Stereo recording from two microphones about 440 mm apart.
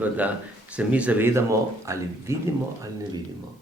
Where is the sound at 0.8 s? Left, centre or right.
Centre.